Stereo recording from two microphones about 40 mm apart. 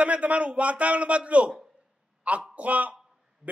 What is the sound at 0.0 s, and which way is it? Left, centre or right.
Speech, right.